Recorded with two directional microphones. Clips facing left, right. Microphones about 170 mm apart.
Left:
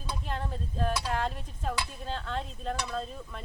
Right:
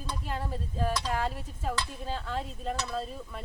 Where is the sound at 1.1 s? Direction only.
5° right (ahead or behind).